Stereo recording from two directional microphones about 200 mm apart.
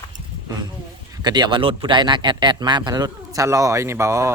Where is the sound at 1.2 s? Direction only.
20° right (ahead or behind).